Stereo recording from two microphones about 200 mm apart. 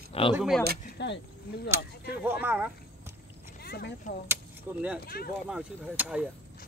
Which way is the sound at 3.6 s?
55° left (ahead or behind).